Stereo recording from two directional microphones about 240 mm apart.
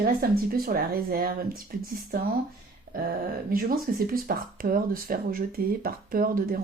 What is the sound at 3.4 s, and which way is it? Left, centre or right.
Speech, right.